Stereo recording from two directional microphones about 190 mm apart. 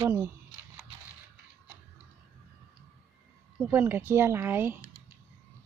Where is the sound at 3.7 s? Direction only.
10° right (ahead or behind).